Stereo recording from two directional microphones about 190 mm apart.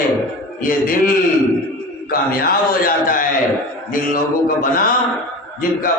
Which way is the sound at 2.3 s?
50° left (ahead or behind).